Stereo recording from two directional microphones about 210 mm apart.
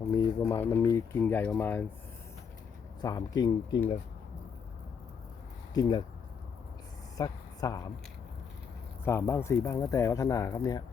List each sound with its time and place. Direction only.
0.2 s speech: 15° left (ahead or behind)
3.0 s speech: 15° left (ahead or behind)
5.7 s speech: 20° left (ahead or behind)
7.2 s a woman's voice: 15° left (ahead or behind)
9.0 s speech: 10° left (ahead or behind)